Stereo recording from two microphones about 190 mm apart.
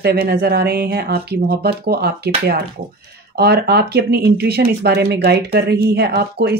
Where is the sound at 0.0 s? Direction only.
55° right (ahead or behind).